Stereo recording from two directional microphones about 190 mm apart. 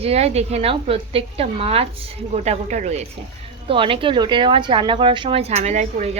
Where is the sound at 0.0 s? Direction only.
35° right (ahead or behind).